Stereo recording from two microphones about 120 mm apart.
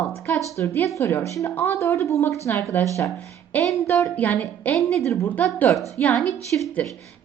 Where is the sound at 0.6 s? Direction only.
25° left (ahead or behind).